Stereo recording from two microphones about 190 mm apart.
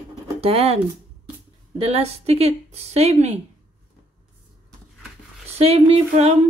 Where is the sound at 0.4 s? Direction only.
30° right (ahead or behind).